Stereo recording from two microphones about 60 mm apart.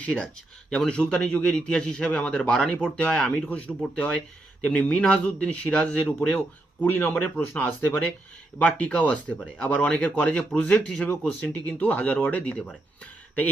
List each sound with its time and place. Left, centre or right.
0.0 s a man's voice: centre
6.8 s speech: left
8.6 s a man's voice: centre
10.6 s speech: centre
11.0 s speech: centre